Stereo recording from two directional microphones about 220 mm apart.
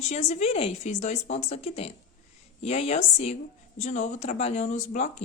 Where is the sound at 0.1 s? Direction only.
30° left (ahead or behind).